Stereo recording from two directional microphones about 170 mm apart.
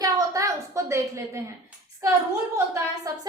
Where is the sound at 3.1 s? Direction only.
20° right (ahead or behind).